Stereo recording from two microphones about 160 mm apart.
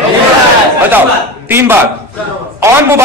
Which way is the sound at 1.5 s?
15° right (ahead or behind).